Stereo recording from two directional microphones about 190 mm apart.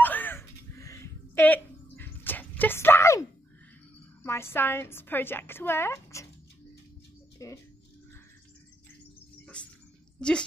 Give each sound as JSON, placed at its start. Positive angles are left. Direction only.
{"t": 0.0, "sound": "a sound", "side_deg": 10}
{"t": 4.2, "sound": "a woman's voice", "side_deg": 15}
{"t": 7.3, "sound": "speech", "side_deg": 15}
{"t": 10.2, "sound": "speech", "side_deg": 5}